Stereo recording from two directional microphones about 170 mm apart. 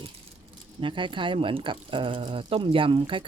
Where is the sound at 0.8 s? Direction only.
30° right (ahead or behind).